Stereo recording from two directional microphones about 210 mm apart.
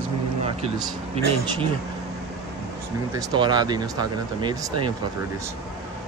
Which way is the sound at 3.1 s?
20° right (ahead or behind).